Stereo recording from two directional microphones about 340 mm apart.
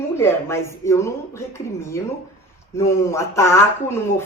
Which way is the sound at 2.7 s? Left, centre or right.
Centre.